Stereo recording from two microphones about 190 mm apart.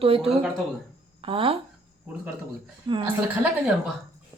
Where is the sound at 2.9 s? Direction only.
25° right (ahead or behind).